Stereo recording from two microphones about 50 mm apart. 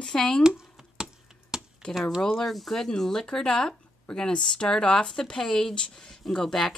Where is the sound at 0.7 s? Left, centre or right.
Centre.